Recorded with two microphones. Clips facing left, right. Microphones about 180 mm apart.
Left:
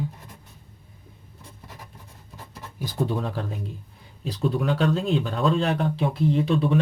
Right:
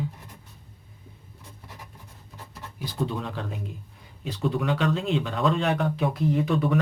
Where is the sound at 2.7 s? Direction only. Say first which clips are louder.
Left 3 dB; 40° left (ahead or behind).